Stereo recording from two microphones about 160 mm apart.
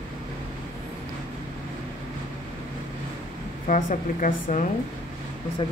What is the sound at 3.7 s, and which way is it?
Speech, 55° left (ahead or behind).